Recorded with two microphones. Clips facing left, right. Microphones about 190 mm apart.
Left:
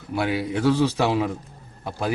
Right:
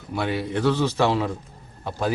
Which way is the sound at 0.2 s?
5° left (ahead or behind).